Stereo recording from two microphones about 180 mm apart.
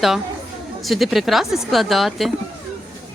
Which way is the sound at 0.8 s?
Centre (ahead or behind).